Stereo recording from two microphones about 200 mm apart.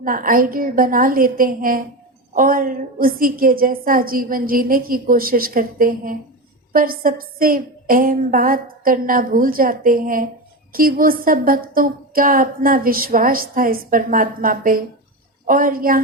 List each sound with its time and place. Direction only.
0.0 s a woman's voice: 45° right (ahead or behind)